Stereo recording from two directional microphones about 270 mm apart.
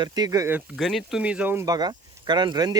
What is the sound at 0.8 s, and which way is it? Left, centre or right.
Speech, centre.